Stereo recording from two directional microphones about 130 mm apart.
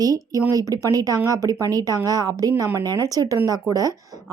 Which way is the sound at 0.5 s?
25° right (ahead or behind).